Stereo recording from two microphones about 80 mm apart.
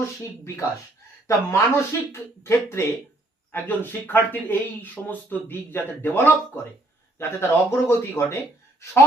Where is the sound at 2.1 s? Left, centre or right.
Left.